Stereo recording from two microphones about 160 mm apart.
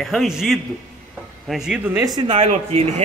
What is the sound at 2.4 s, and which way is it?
Speech, 40° right (ahead or behind).